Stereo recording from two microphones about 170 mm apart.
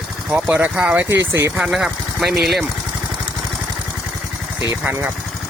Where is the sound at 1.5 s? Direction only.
5° right (ahead or behind).